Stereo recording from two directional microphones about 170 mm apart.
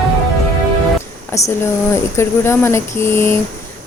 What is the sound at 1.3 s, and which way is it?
Speech, 15° left (ahead or behind).